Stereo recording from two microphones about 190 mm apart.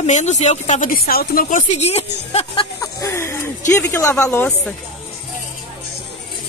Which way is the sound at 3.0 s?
15° left (ahead or behind).